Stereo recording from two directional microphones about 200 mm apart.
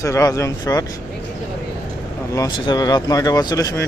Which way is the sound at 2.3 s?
15° left (ahead or behind).